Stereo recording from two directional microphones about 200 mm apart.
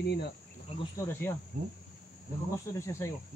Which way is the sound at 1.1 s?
10° left (ahead or behind).